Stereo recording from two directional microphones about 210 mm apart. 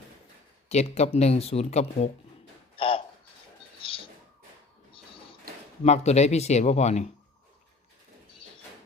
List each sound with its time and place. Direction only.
0.7 s speech: 30° left (ahead or behind)
2.7 s a sound: 25° left (ahead or behind)
5.8 s speech: 30° left (ahead or behind)